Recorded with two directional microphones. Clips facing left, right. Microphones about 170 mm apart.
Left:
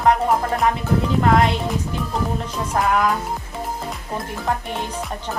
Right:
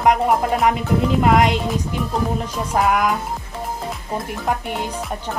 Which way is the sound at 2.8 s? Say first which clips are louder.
Right 2 dB; 10° right (ahead or behind).